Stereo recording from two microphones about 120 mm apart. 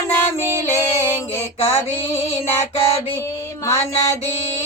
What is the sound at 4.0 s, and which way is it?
Mantra, 25° left (ahead or behind).